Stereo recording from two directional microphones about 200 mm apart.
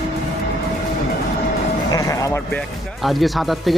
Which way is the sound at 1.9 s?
15° left (ahead or behind).